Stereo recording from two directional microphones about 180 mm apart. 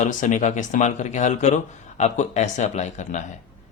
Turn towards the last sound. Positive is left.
turn(degrees=40)  # may be behind; listen again after turning